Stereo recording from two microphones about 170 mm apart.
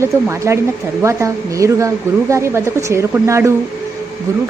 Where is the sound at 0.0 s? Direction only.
15° right (ahead or behind).